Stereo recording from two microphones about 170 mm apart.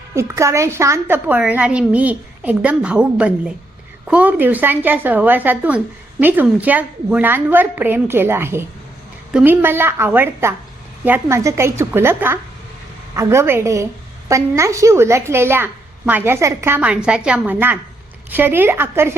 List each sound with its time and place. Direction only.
0.1 s a woman's voice: 15° right (ahead or behind)